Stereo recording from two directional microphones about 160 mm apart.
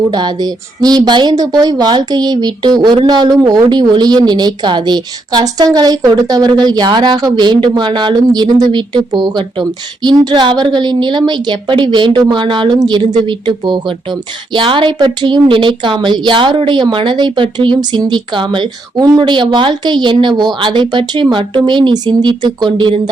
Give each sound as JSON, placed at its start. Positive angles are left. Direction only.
{"t": 0.1, "sound": "a woman's voice", "side_deg": -25}